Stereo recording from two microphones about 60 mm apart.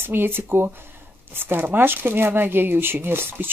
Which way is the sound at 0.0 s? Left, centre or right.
Right.